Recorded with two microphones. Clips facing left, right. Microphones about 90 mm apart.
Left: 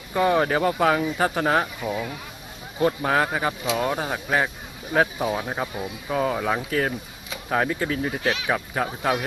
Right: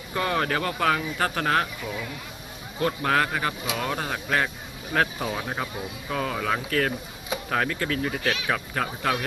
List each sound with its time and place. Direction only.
0.1 s speech: 15° left (ahead or behind)